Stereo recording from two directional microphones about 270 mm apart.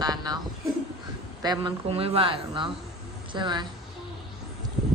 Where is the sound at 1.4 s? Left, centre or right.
Centre.